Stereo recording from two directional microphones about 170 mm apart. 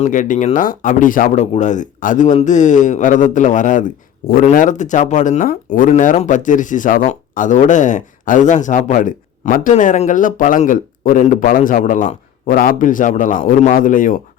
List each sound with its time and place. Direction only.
0.0 s speech: 50° left (ahead or behind)
5.9 s speech: 45° left (ahead or behind)